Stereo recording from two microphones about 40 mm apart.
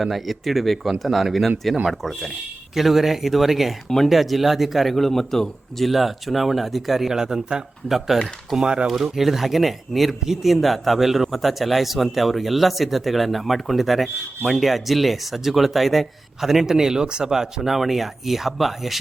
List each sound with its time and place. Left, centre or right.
0.0 s speech: centre
3.8 s speech: centre
4.1 s speech: centre
5.9 s speech: centre
7.1 s speech: centre
8.5 s speech: right
8.9 s speech: centre